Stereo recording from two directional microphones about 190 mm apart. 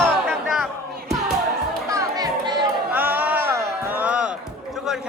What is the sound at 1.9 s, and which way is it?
Children playing, 20° right (ahead or behind).